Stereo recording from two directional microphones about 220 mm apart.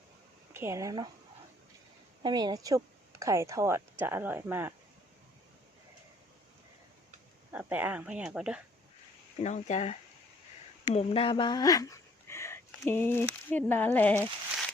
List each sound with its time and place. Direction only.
0.5 s speech: 10° right (ahead or behind)
2.2 s speech: 20° right (ahead or behind)
7.5 s speech: 5° right (ahead or behind)
9.4 s speech: 30° left (ahead or behind); by 14.2 s 10° left (ahead or behind)